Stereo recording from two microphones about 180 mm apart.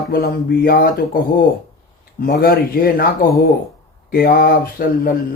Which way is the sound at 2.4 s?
55° left (ahead or behind).